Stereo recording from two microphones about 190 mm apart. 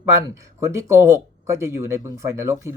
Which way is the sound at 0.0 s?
15° right (ahead or behind).